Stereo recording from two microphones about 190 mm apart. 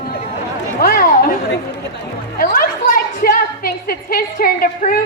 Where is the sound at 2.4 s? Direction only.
50° left (ahead or behind).